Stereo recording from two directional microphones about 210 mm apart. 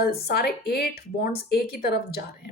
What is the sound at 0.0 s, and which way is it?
Speech, 50° left (ahead or behind).